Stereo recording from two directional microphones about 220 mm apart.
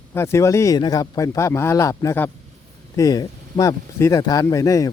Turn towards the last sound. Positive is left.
turn(degrees=15)  # may be behind; listen again after turning